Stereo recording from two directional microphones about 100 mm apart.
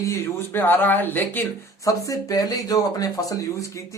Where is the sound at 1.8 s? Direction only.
35° left (ahead or behind).